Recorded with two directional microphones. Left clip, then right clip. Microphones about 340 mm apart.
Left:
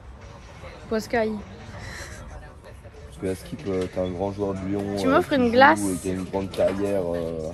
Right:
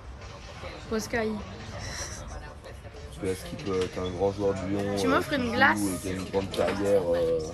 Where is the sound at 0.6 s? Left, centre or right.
Centre.